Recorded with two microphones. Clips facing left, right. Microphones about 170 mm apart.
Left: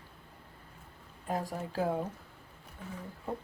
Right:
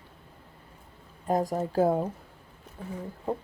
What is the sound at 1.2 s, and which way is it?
Speech, 40° right (ahead or behind).